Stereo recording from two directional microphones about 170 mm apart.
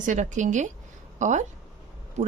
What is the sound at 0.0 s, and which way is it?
A woman's voice, 45° right (ahead or behind).